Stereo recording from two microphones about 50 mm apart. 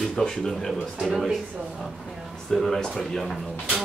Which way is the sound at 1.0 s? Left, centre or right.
Centre.